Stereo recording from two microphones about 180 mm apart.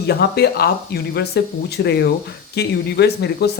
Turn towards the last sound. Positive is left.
turn(degrees=65)  # may be behind; listen again after turning